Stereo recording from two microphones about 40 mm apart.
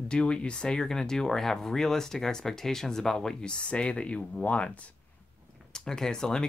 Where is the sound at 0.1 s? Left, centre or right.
Left.